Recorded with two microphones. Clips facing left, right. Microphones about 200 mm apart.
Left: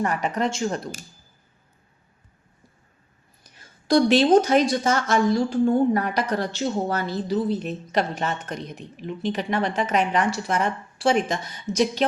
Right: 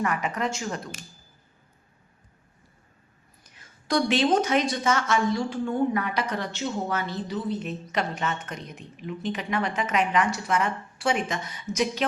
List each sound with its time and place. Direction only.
0.0 s speech: 35° left (ahead or behind)
3.6 s speech: 35° left (ahead or behind)